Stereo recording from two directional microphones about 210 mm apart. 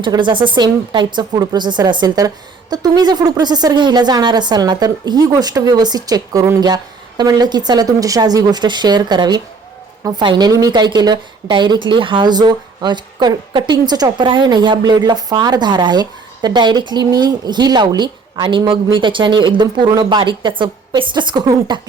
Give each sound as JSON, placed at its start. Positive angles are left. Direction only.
{"t": 0.0, "sound": "a woman's voice", "side_deg": -20}